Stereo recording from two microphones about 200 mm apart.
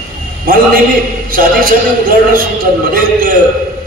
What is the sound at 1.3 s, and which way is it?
A man's voice, 45° right (ahead or behind).